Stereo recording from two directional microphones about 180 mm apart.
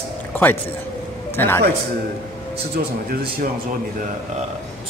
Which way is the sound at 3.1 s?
55° right (ahead or behind).